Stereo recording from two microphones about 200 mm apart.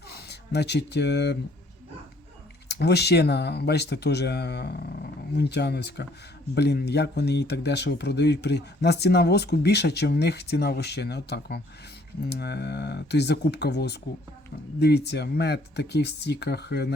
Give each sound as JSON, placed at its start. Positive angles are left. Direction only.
{"t": 0.1, "sound": "speech", "side_deg": 55}
{"t": 2.6, "sound": "speech", "side_deg": 55}